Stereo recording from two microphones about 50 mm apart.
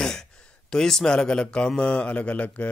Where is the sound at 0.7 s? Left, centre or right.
Centre.